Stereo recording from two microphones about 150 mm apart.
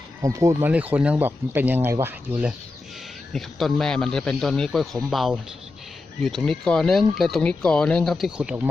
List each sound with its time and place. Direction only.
0.2 s speech: 20° right (ahead or behind)
0.7 s speech: 10° right (ahead or behind)
3.3 s speech: centre (ahead or behind)